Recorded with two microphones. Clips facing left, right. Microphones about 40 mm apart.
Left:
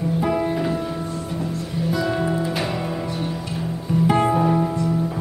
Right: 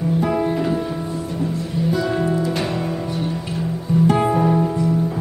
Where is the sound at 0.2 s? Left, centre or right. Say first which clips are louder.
Even; centre.